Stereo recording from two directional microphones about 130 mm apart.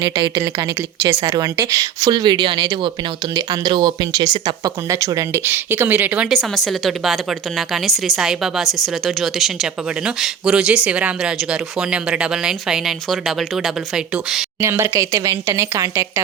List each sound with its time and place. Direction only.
0.0 s speech: 35° right (ahead or behind); by 6.2 s 15° right (ahead or behind)
6.3 s speech: centre (ahead or behind)
14.6 s speech: 20° right (ahead or behind)